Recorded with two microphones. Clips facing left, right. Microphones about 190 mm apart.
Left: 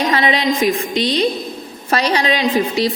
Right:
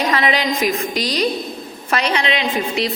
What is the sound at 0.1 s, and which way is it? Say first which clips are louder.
A woman's voice: left 2 dB; 30° left (ahead or behind).